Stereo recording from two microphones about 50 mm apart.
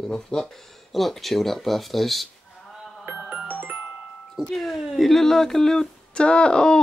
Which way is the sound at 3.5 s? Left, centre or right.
Right.